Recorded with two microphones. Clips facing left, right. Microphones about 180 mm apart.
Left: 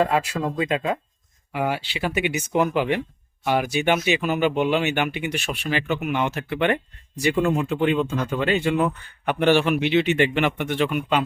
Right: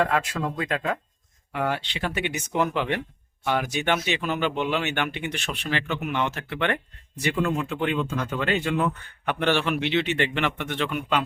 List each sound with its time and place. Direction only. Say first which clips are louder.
0.1 s speech: left 3 dB; 10° left (ahead or behind)